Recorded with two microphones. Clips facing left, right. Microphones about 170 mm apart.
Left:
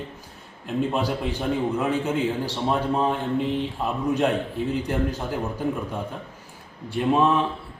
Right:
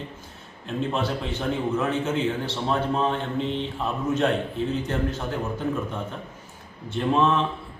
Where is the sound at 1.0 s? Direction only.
35° left (ahead or behind).